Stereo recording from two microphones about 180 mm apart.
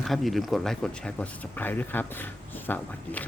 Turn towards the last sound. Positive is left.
turn(degrees=10)  # may be behind; listen again after turning